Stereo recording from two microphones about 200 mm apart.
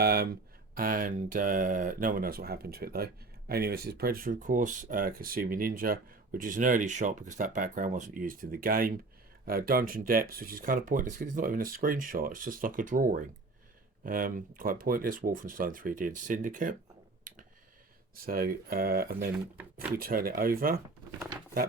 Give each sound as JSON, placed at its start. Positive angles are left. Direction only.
{"t": 0.0, "sound": "speech", "side_deg": -50}
{"t": 18.2, "sound": "speech", "side_deg": -50}